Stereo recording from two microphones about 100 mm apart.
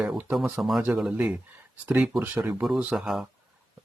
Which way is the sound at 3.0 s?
Centre (ahead or behind).